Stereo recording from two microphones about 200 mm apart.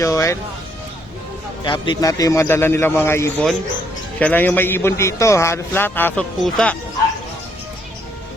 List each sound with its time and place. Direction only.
0.0 s a man's voice: 15° left (ahead or behind)
1.6 s a man's voice: 25° left (ahead or behind); by 6.7 s 5° left (ahead or behind)